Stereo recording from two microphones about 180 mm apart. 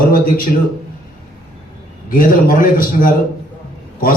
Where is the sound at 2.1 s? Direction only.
50° left (ahead or behind).